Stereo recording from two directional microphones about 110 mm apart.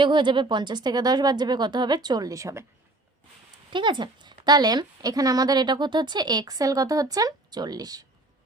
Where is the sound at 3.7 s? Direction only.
45° right (ahead or behind).